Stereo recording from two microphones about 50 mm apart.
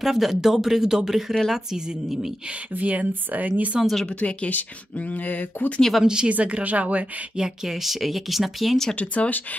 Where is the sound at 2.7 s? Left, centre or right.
Right.